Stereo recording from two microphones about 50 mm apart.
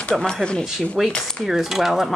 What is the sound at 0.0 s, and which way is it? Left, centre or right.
Speech, centre.